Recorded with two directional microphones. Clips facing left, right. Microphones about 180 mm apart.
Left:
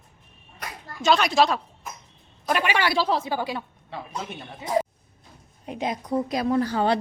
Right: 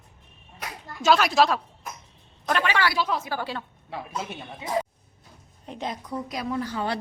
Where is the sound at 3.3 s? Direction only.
15° left (ahead or behind).